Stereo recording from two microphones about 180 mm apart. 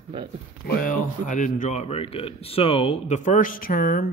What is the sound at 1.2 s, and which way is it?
Speech, 45° left (ahead or behind).